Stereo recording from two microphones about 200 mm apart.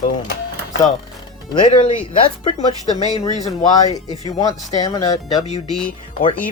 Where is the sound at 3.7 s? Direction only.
20° left (ahead or behind).